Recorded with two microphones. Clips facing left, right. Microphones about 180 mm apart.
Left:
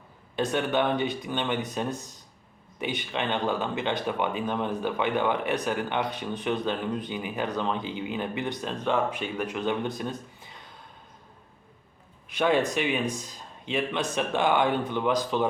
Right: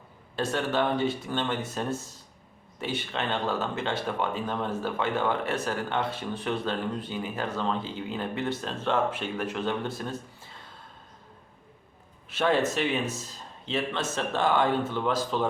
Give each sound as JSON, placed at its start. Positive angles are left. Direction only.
{"t": 0.3, "sound": "speech", "side_deg": 15}
{"t": 12.3, "sound": "a man's voice", "side_deg": 15}